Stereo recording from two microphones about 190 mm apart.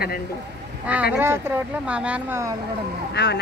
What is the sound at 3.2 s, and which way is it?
Speech, 65° left (ahead or behind).